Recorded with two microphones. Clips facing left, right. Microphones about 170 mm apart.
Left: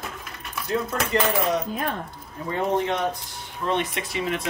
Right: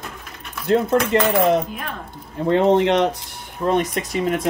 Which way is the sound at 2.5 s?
90° right.